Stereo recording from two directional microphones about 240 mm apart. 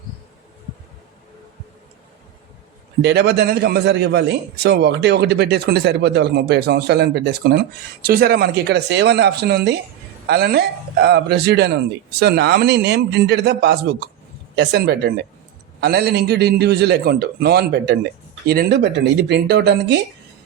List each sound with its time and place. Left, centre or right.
3.0 s a man's voice: right